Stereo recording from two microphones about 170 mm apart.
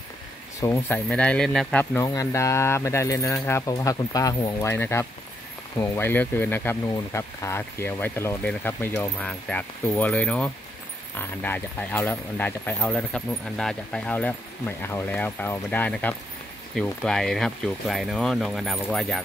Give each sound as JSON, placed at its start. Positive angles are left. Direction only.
{"t": 0.6, "sound": "speech", "side_deg": 15}
{"t": 2.0, "sound": "speech", "side_deg": 20}